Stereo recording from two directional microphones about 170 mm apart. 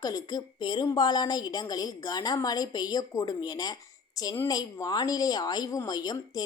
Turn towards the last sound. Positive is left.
turn(degrees=25)  # may be behind; listen again after turning